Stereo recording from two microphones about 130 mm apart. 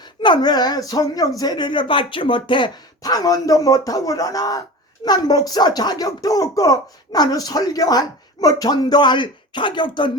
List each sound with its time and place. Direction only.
0.2 s speech: 35° left (ahead or behind)